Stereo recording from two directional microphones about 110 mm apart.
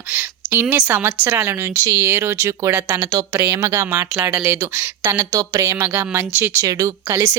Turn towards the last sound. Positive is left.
turn(degrees=-30)  # may be behind; listen again after turning